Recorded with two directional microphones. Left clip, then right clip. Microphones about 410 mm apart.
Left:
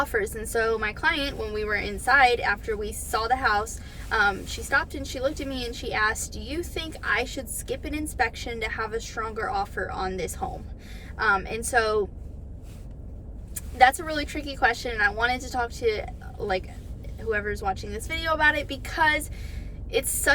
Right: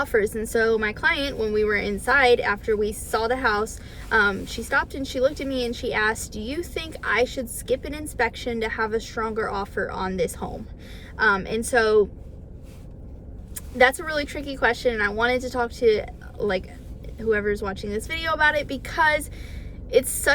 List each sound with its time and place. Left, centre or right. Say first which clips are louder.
0.0 s speech: right 4 dB; centre
13.7 s speech: even; centre
17.2 s speech: right 4 dB; centre